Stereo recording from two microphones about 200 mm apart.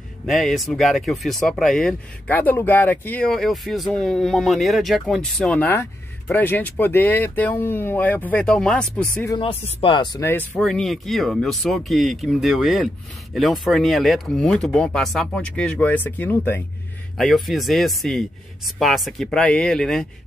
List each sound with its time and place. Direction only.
0.3 s speech: centre (ahead or behind)
9.4 s speech: 30° left (ahead or behind)
10.3 s speech: 10° left (ahead or behind)